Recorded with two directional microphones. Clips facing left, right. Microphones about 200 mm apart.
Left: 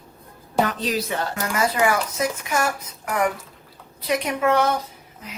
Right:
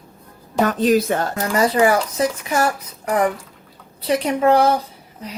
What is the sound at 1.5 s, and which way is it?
A woman's voice, 35° right (ahead or behind).